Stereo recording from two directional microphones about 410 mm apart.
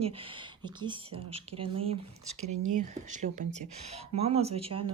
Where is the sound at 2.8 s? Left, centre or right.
Centre.